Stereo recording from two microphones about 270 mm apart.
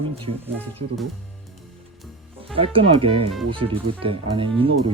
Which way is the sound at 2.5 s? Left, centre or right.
Centre.